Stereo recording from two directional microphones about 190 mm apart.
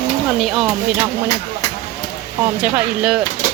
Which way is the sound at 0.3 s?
Centre (ahead or behind).